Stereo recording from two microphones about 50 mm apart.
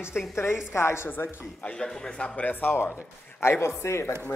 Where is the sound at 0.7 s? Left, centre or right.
Left.